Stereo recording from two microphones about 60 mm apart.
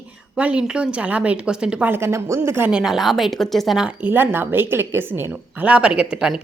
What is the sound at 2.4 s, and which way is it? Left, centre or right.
Speech, right.